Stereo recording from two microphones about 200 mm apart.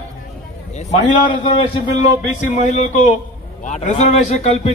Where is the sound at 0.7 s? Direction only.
40° left (ahead or behind).